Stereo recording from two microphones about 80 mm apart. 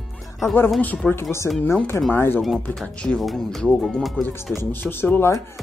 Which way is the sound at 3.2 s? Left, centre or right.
Centre.